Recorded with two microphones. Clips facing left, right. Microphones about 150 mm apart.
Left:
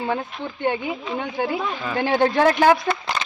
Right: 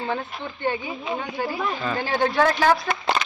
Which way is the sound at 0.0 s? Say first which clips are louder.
Left 3 dB; 10° left (ahead or behind).